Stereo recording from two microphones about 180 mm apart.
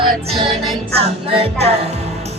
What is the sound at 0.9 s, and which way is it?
Music, 35° right (ahead or behind).